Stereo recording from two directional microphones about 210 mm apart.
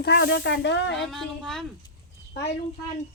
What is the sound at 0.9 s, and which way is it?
Speech, centre (ahead or behind).